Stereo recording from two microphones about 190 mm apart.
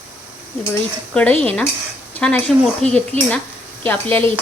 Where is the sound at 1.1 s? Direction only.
5° left (ahead or behind).